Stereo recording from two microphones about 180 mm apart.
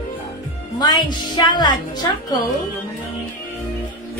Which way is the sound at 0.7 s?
25° left (ahead or behind).